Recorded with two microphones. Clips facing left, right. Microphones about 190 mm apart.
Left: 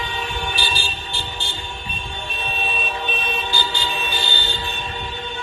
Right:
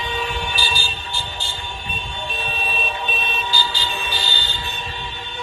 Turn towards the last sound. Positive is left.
turn(degrees=55)  # may be behind; listen again after turning